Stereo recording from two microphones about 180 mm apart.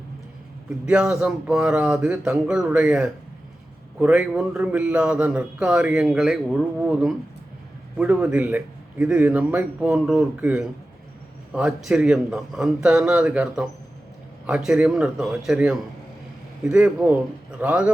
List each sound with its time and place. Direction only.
0.9 s a man's voice: 5° right (ahead or behind)